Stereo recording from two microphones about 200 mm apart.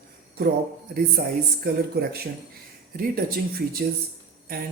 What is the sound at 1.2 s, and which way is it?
Speech, 50° right (ahead or behind).